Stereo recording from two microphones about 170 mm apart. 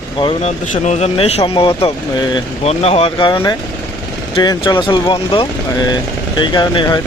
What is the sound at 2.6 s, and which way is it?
Speech, 35° left (ahead or behind).